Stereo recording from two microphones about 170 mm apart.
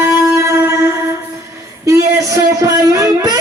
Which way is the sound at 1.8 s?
15° right (ahead or behind).